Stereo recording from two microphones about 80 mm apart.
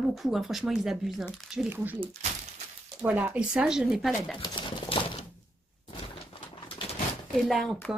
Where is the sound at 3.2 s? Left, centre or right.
Centre.